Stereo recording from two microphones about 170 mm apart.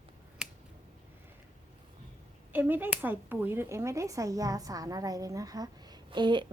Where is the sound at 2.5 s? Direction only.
10° right (ahead or behind).